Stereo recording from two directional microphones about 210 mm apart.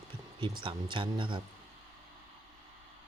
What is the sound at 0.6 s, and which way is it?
Speech, 25° right (ahead or behind).